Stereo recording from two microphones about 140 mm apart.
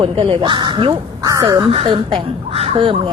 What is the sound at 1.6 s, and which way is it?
Speech, 40° right (ahead or behind).